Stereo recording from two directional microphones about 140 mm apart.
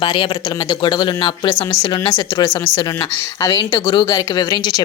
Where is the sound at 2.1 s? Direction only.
20° left (ahead or behind).